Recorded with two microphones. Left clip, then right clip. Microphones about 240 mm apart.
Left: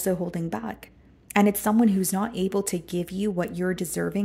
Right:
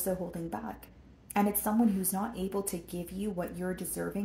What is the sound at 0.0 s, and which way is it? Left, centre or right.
A woman's voice, left.